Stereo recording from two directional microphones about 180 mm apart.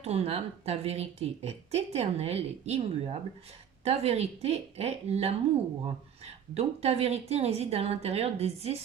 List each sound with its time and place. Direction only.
0.0 s a woman's voice: 35° right (ahead or behind)